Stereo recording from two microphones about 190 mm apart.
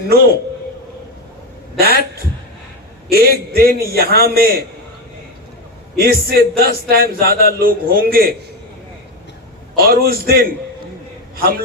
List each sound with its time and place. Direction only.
1.8 s a man's voice: 55° right (ahead or behind)
6.0 s a man's voice: 50° right (ahead or behind)
9.7 s a man's voice: 55° right (ahead or behind)